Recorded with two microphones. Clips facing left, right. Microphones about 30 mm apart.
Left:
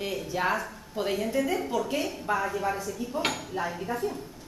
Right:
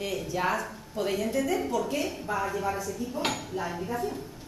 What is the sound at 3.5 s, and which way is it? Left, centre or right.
Speech, left.